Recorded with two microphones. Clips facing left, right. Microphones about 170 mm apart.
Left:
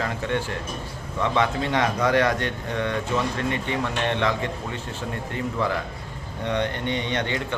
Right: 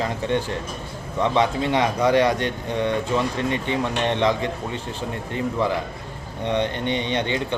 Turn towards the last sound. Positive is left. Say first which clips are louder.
# right 3 dB
turn(degrees=-20)  # may be behind; listen again after turning